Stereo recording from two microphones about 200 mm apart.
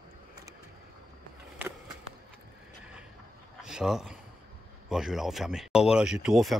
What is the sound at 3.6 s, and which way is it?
Speech, 5° right (ahead or behind).